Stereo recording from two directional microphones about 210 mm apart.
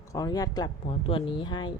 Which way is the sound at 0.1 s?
15° left (ahead or behind).